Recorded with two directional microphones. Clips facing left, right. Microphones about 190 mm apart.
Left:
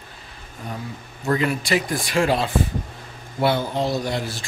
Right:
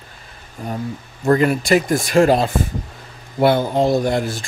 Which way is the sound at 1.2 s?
50° right (ahead or behind).